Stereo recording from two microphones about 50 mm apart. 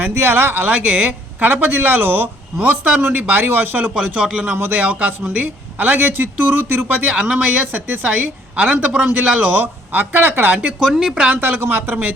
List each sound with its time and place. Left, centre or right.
0.1 s speech: right
0.7 s a man's voice: right
2.6 s a man's voice: right
3.9 s a man's voice: right
7.1 s a man's voice: right
10.8 s speech: centre
11.3 s speech: right